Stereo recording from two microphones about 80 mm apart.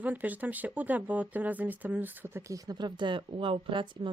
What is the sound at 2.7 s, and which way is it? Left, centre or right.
Speech, right.